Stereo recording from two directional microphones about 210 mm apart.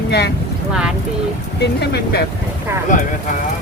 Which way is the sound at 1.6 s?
50° left (ahead or behind).